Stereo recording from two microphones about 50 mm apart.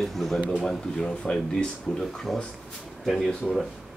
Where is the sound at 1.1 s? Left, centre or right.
Centre.